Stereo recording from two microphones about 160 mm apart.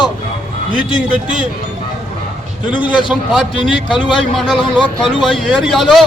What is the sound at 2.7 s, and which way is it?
Speech, 30° left (ahead or behind).